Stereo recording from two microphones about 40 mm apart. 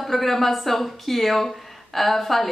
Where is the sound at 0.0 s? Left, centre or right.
Centre.